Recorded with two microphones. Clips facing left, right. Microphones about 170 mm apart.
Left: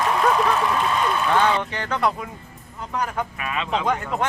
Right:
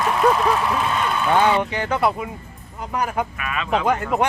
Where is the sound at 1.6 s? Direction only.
10° right (ahead or behind).